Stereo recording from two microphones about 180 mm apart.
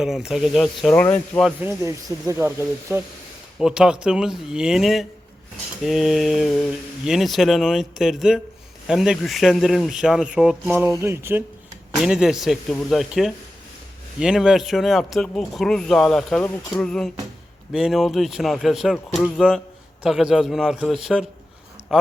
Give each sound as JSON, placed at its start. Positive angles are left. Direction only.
{"t": 0.0, "sound": "speech", "side_deg": -5}
{"t": 1.6, "sound": "speech", "side_deg": -15}
{"t": 3.6, "sound": "speech", "side_deg": -5}